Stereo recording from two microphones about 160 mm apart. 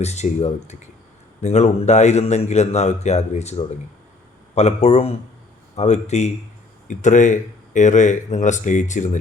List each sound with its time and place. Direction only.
0.0 s a man's voice: 45° left (ahead or behind)